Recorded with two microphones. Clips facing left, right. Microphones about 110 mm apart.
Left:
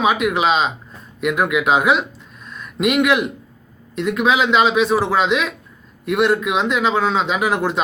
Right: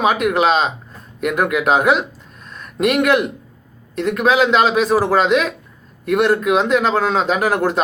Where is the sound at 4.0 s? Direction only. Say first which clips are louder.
Right 2 dB; 45° right (ahead or behind).